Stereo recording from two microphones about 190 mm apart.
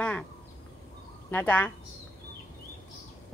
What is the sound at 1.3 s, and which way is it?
Speech, 10° left (ahead or behind).